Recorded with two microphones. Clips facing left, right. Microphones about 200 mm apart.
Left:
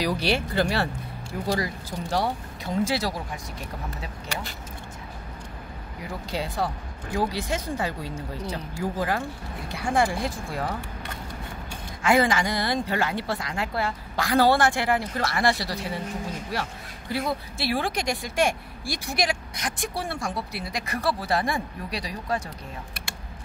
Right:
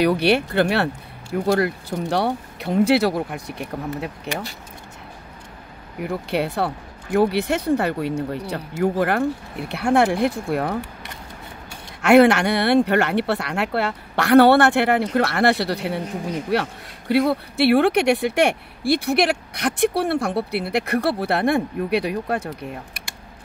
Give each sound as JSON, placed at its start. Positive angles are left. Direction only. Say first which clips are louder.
{"t": 0.0, "sound": "speech", "louder": "right 8 dB", "side_deg": -60}
{"t": 5.9, "sound": "speech", "louder": "right 8 dB", "side_deg": -65}
{"t": 12.0, "sound": "speech", "louder": "right 8 dB", "side_deg": -70}